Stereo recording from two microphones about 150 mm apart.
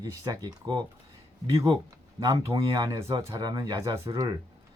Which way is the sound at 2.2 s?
20° right (ahead or behind).